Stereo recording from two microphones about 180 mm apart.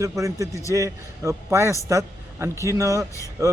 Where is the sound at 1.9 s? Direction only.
15° right (ahead or behind).